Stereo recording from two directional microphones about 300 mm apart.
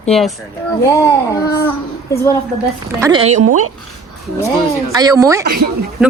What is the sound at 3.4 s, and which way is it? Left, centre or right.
Speech, right.